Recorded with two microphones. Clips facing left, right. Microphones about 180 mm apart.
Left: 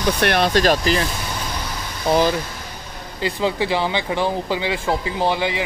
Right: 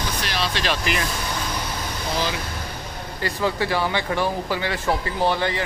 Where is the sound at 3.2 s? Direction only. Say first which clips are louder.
Left 3 dB; 15° left (ahead or behind).